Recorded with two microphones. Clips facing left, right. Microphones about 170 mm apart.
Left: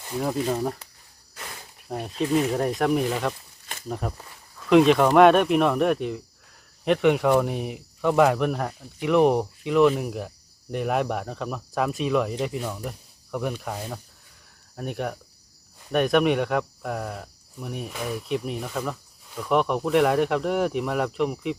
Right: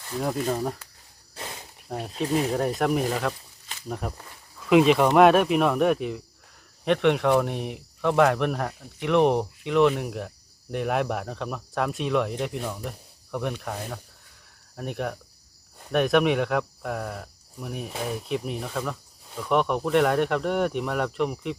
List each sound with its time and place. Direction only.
0.2 s speech: centre (ahead or behind)
1.4 s cricket: 25° right (ahead or behind)
1.9 s speech: centre (ahead or behind)